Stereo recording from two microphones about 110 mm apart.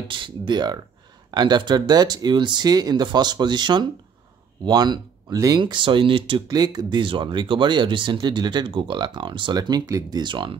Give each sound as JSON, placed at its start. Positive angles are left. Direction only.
{"t": 0.1, "sound": "speech", "side_deg": -45}
{"t": 5.6, "sound": "speech", "side_deg": -50}
{"t": 6.4, "sound": "speech", "side_deg": -35}
{"t": 10.2, "sound": "speech", "side_deg": -50}